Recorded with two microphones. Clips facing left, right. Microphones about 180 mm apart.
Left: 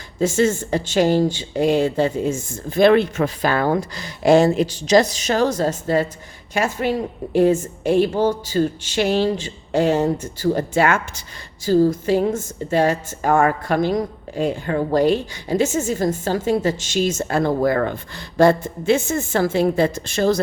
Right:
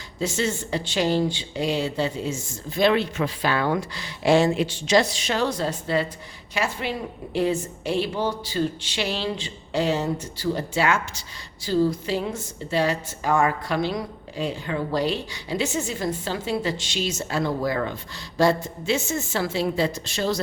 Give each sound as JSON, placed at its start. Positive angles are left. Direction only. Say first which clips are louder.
{"t": 0.2, "sound": "a woman's voice", "louder": "left 8 dB", "side_deg": 50}